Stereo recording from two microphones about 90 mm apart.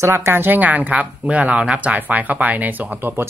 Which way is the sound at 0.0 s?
25° right (ahead or behind).